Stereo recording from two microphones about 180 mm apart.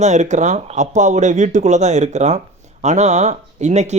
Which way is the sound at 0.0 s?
40° right (ahead or behind).